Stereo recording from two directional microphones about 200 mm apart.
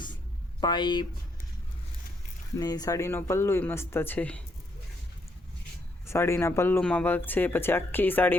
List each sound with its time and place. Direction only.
0.6 s speech: 20° left (ahead or behind)
2.6 s speech: 20° left (ahead or behind)
6.1 s speech: 15° left (ahead or behind)